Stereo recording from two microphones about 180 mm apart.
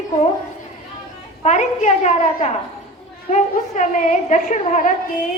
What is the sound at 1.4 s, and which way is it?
A woman's voice, 40° left (ahead or behind).